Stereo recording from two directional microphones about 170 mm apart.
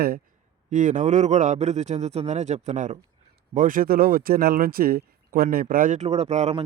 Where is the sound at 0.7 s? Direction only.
50° right (ahead or behind).